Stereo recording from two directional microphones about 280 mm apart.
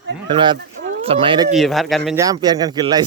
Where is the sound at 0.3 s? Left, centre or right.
Centre.